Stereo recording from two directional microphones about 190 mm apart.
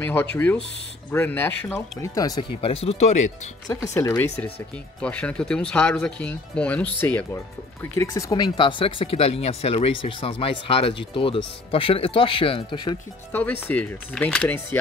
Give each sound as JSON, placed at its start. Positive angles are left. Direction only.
{"t": 0.1, "sound": "speech", "side_deg": 10}
{"t": 2.6, "sound": "speech", "side_deg": 30}
{"t": 3.6, "sound": "speech", "side_deg": 15}
{"t": 13.3, "sound": "speech", "side_deg": 10}